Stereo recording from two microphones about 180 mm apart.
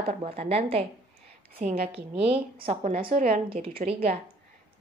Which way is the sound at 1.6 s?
45° right (ahead or behind).